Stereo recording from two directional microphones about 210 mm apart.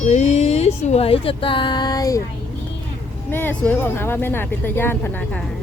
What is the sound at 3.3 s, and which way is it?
Speech, 10° left (ahead or behind).